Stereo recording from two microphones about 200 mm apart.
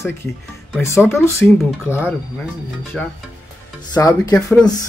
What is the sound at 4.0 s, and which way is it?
Speech, 15° left (ahead or behind).